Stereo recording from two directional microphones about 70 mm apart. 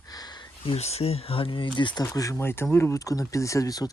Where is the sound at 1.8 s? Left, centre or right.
Left.